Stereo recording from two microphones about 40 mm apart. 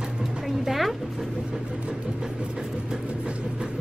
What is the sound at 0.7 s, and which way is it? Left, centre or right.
Music, centre.